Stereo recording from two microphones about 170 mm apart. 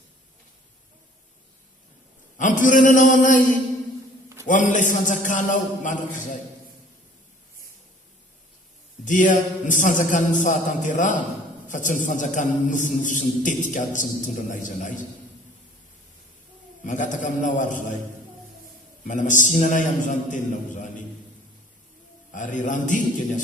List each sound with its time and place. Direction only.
2.4 s a man's voice: 50° left (ahead or behind)
4.4 s a man's voice: 50° left (ahead or behind)
9.0 s a man's voice: 50° left (ahead or behind)
16.8 s a man's voice: 50° left (ahead or behind)
19.0 s a man's voice: 50° left (ahead or behind)
22.3 s a man's voice: 50° left (ahead or behind)